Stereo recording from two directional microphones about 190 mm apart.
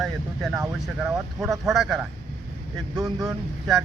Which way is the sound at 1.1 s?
15° right (ahead or behind).